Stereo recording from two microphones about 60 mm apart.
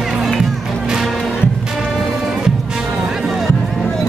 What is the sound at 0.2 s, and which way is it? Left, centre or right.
Music, centre.